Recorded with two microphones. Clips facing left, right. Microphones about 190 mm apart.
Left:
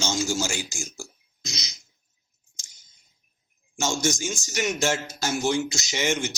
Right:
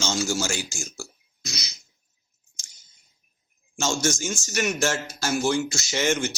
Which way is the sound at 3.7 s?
15° left (ahead or behind).